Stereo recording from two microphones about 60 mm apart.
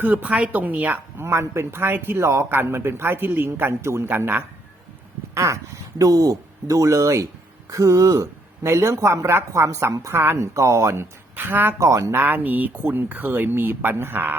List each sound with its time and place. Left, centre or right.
0.0 s speech: right
1.2 s a man's voice: right
3.7 s speech: right
5.3 s speech: right
8.6 s speech: right
9.9 s speech: right
10.2 s speech: right
11.3 s a man's voice: right
11.8 s speech: right
12.1 s a man's voice: right